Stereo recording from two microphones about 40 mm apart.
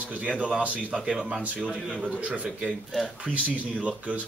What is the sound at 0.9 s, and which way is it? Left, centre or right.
Speech, centre.